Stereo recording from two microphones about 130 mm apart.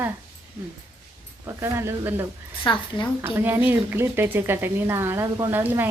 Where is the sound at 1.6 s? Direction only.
20° right (ahead or behind).